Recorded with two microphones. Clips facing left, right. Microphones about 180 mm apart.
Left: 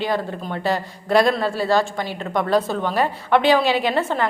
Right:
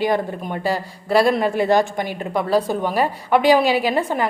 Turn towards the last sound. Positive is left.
turn(degrees=-10)  # may be behind; listen again after turning